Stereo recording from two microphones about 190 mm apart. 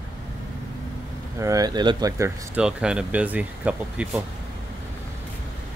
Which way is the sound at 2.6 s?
5° right (ahead or behind).